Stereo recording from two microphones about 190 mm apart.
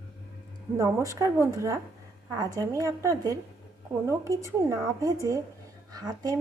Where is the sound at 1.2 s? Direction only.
15° right (ahead or behind).